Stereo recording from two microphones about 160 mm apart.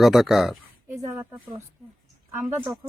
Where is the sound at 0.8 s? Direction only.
15° right (ahead or behind).